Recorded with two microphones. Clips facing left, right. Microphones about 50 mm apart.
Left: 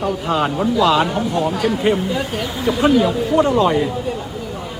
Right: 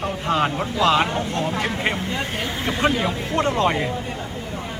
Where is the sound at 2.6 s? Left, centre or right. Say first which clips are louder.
Left 7 dB; right.